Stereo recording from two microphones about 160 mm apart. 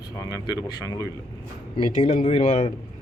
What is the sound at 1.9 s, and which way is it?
Speech, 40° left (ahead or behind).